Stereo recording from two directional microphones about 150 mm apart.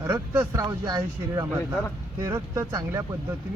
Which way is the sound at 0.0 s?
20° right (ahead or behind).